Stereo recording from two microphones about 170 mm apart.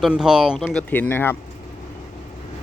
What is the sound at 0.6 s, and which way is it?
Speech, 5° left (ahead or behind).